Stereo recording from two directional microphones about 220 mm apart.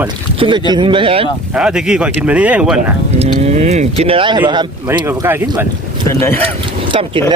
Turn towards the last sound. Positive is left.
turn(degrees=-25)  # may be behind; listen again after turning